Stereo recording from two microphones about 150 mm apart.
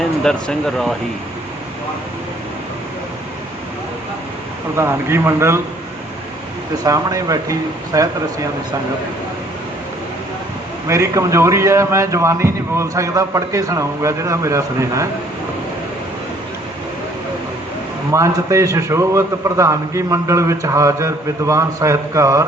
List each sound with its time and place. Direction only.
0.2 s speech: 5° left (ahead or behind)
4.8 s a man's voice: 15° right (ahead or behind)
6.8 s a man's voice: 20° right (ahead or behind)
10.8 s a man's voice: 20° right (ahead or behind)
18.1 s a man's voice: 20° right (ahead or behind)